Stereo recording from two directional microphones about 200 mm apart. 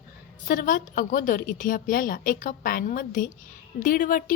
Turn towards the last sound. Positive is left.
turn(degrees=45)  # may be behind; listen again after turning